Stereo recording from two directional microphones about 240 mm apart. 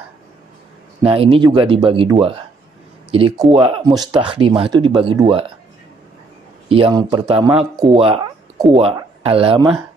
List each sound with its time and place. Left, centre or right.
1.0 s speech: right
6.7 s speech: centre